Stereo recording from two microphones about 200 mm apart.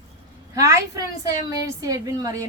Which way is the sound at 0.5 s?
15° right (ahead or behind).